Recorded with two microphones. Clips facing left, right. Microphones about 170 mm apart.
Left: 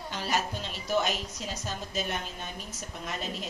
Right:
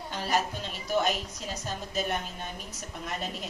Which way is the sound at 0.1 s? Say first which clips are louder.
Right 2 dB; 50° right (ahead or behind).